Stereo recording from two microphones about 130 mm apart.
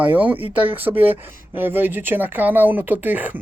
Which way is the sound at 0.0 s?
15° right (ahead or behind).